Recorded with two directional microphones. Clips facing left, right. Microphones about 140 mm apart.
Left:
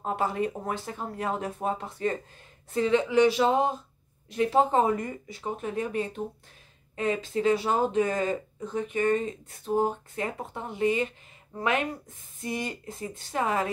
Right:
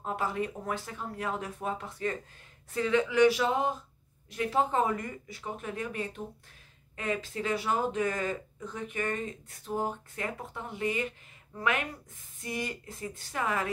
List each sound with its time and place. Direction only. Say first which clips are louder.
0.0 s speech: left 4 dB; 25° left (ahead or behind)